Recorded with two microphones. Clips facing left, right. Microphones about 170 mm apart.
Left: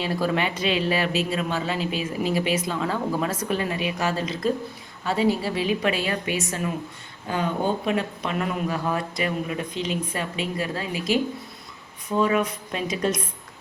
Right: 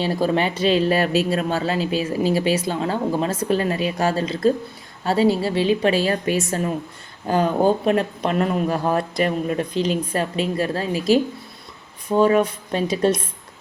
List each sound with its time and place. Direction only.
0.0 s speech: 30° right (ahead or behind)